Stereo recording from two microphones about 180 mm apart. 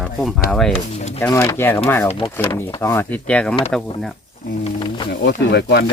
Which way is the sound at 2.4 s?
15° left (ahead or behind).